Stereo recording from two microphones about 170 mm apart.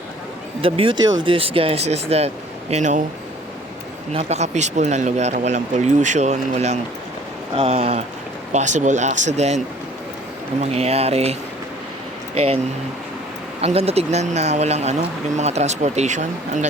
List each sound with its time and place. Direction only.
0.6 s speech: 30° right (ahead or behind)
4.1 s speech: 40° right (ahead or behind)
10.6 s speech: 40° right (ahead or behind)
13.6 s speech: 35° right (ahead or behind)